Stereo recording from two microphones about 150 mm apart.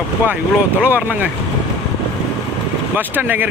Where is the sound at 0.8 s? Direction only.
10° right (ahead or behind).